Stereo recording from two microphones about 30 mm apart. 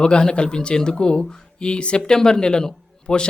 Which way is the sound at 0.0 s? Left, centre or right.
Left.